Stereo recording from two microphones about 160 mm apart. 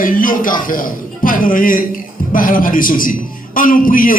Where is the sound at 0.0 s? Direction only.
60° left (ahead or behind).